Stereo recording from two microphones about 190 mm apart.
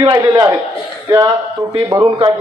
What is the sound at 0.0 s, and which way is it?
Speech, 20° right (ahead or behind).